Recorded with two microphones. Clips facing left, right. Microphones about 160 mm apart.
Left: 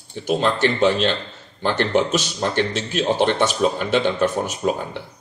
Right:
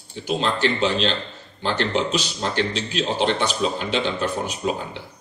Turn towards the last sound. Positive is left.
turn(degrees=50)  # may be behind; listen again after turning